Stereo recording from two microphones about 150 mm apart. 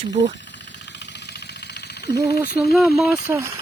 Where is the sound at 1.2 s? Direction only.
90° left.